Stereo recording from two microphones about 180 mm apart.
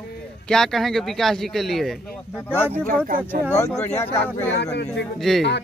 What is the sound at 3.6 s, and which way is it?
Speech, 15° left (ahead or behind).